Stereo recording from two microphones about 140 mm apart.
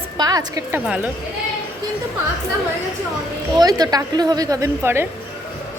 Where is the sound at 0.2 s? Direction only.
25° right (ahead or behind).